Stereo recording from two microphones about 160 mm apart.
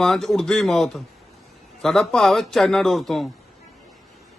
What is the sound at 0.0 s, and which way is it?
Speech, centre (ahead or behind).